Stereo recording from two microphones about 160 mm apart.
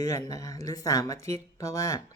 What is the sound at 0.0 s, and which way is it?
Speech, 20° left (ahead or behind).